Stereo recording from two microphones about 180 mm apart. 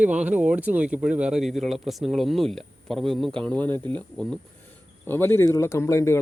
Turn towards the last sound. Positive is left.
turn(degrees=15)  # may be behind; listen again after turning